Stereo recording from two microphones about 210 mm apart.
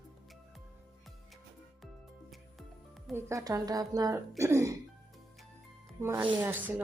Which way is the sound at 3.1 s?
10° right (ahead or behind).